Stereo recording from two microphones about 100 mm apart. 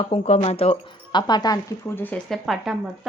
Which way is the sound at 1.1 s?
45° left (ahead or behind).